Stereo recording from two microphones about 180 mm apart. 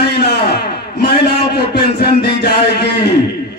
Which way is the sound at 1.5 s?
60° left (ahead or behind).